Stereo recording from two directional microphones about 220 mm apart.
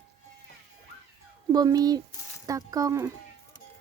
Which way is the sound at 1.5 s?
15° right (ahead or behind).